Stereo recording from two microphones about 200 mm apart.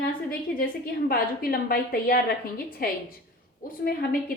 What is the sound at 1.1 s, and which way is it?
A woman's voice, 50° left (ahead or behind).